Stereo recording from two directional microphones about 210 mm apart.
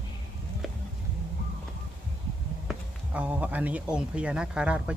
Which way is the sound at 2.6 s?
5° right (ahead or behind).